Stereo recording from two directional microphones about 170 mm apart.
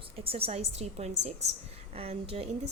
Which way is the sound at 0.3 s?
35° right (ahead or behind).